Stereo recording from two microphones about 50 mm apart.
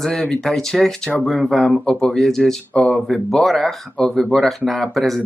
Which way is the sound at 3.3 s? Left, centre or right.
Centre.